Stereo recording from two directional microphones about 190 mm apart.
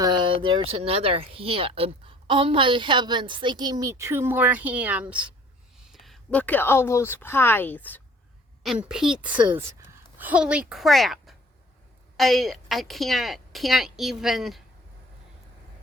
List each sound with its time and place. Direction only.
0.0 s speech: 25° right (ahead or behind); by 8.0 s 10° left (ahead or behind)
8.6 s a woman's voice: centre (ahead or behind)
9.5 s a woman's voice: 15° right (ahead or behind)